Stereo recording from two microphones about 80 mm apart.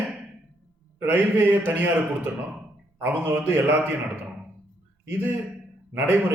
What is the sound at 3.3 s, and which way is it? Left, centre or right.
Speech, right.